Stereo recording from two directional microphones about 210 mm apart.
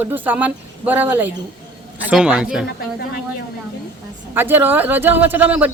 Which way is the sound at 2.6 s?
50° left (ahead or behind).